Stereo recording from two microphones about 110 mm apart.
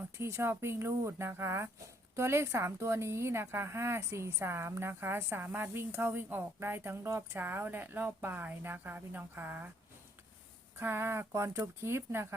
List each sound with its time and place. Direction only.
0.2 s a woman's voice: 25° right (ahead or behind)
10.8 s a woman's voice: 20° right (ahead or behind)